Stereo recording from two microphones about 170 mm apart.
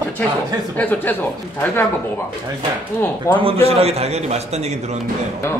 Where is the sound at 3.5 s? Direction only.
35° right (ahead or behind).